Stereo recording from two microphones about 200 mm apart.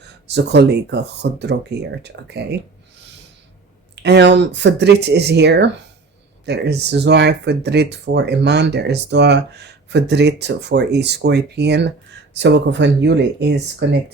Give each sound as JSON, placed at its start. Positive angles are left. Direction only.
{"t": 0.0, "sound": "speech", "side_deg": -60}
{"t": 4.0, "sound": "speech", "side_deg": -60}